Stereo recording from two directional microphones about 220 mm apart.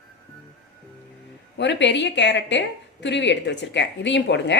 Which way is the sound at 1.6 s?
55° left (ahead or behind).